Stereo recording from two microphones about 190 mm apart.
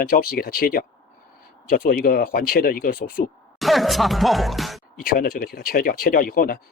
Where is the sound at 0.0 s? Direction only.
50° left (ahead or behind).